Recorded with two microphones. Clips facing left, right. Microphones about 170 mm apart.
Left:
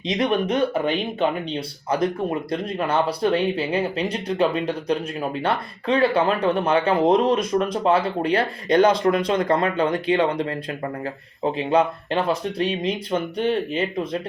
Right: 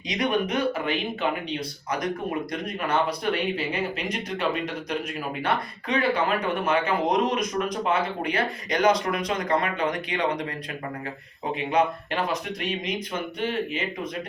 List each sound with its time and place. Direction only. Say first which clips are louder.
0.1 s speech: left 4 dB; 30° left (ahead or behind)
11.5 s speech: left 2 dB; 30° left (ahead or behind)